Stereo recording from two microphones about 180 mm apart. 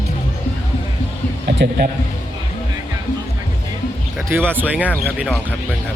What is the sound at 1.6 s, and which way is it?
Speech, 70° right (ahead or behind).